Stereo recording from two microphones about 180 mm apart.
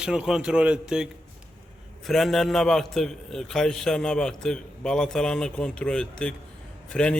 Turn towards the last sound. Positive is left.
turn(degrees=5)  # may be behind; listen again after turning